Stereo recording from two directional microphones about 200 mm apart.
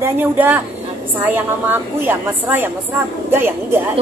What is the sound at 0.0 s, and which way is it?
A woman's voice, 10° right (ahead or behind).